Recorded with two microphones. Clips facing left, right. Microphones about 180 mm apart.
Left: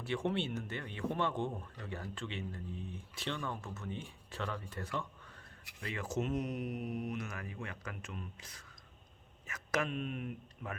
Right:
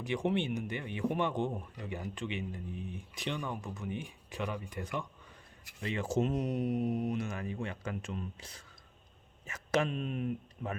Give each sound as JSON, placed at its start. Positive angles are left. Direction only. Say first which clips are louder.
{"t": 0.0, "sound": "speech", "louder": "right 3 dB", "side_deg": -15}